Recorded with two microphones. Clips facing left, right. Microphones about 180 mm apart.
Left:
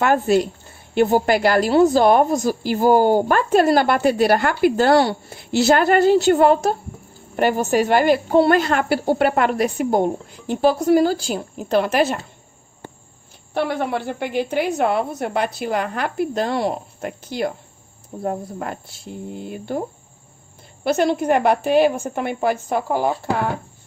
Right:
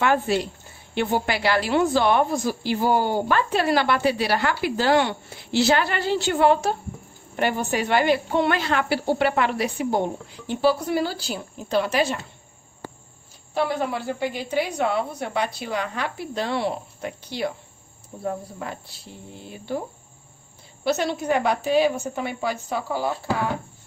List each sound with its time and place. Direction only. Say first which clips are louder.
0.0 s a woman's voice: left 5 dB; 45° left (ahead or behind)
13.5 s a woman's voice: left 2 dB; 65° left (ahead or behind)
20.8 s a woman's voice: left 5 dB; 55° left (ahead or behind)